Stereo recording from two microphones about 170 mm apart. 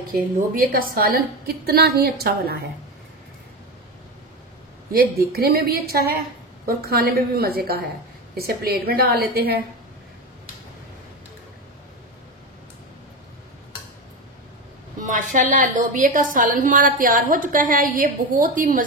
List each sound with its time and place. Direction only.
0.6 s a woman's voice: 60° right (ahead or behind)
4.9 s a woman's voice: 65° right (ahead or behind)
15.0 s a woman's voice: 45° right (ahead or behind)